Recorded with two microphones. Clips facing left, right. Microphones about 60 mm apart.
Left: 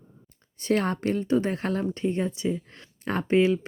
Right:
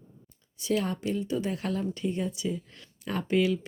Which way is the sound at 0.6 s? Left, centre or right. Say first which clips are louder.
Left 4 dB; left.